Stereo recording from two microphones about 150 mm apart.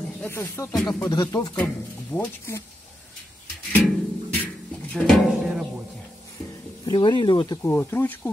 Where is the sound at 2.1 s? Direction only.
10° left (ahead or behind).